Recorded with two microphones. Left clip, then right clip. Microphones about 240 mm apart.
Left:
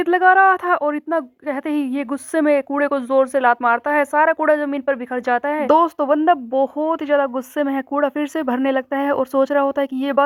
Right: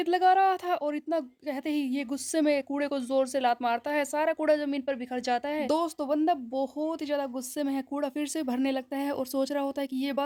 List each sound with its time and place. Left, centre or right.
0.1 s a woman's voice: centre